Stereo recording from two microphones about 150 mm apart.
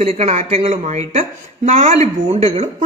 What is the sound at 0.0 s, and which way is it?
A woman's voice, 45° right (ahead or behind).